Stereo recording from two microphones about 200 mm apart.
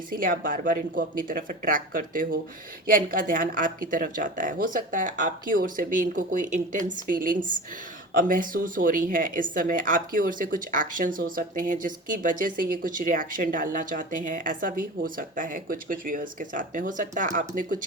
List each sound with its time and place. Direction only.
0.1 s speech: 45° right (ahead or behind)